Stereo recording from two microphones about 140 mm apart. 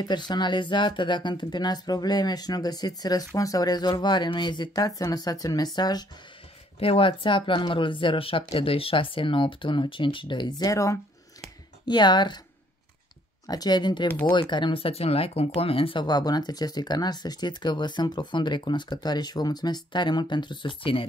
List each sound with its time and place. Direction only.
0.0 s speech: 30° left (ahead or behind)
6.8 s speech: 40° left (ahead or behind)
13.5 s speech: 30° left (ahead or behind)
14.0 s speech: 15° left (ahead or behind)
14.3 s speech: 35° left (ahead or behind)